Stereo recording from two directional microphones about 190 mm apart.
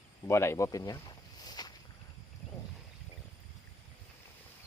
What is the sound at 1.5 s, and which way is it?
Boat, 20° left (ahead or behind).